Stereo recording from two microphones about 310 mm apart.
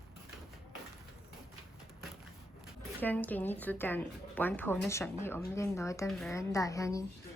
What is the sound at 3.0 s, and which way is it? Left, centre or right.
A woman's voice, centre.